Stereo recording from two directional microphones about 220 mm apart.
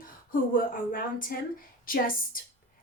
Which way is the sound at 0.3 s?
40° left (ahead or behind).